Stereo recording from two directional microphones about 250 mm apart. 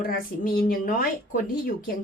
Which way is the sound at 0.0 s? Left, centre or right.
Left.